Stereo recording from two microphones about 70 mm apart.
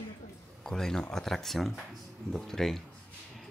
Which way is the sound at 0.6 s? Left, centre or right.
Centre.